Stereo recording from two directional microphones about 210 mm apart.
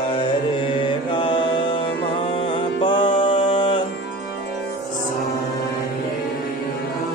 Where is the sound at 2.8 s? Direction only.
20° left (ahead or behind).